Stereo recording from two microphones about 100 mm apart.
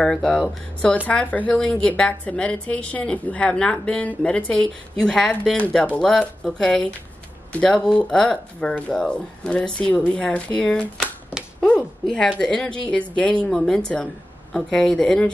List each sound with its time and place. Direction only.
0.0 s speech: 5° left (ahead or behind)